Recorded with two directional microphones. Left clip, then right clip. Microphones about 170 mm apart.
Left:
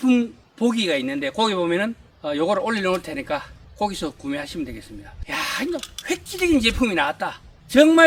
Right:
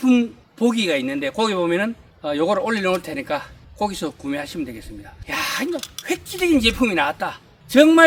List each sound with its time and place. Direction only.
0.0 s speech: 5° right (ahead or behind)